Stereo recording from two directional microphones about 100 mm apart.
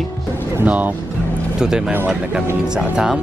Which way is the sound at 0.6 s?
15° right (ahead or behind).